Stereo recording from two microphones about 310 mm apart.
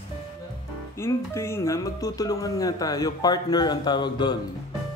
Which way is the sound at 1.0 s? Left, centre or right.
Centre.